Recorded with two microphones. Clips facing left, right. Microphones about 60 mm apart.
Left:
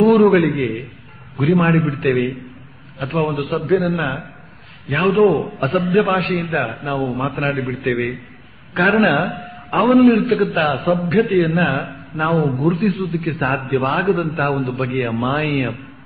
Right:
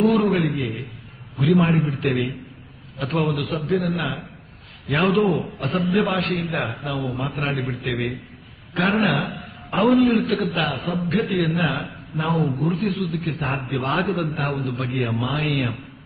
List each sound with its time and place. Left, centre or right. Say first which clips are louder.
0.2 s a man's voice: left 8 dB; left
2.0 s a man's voice: left 7 dB; left
3.0 s a man's voice: left 1 dB; left
3.3 s a man's voice: left 5 dB; left
4.8 s a man's voice: left 3 dB; centre
5.4 s a man's voice: left 5 dB; left
5.9 s a man's voice: left 6 dB; left
6.4 s a man's voice: left 5 dB; left
9.8 s a man's voice: left 5 dB; left
14.7 s a man's voice: left 4 dB; left